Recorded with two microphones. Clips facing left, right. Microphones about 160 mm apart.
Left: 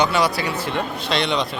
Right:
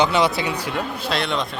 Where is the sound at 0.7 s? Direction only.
5° right (ahead or behind).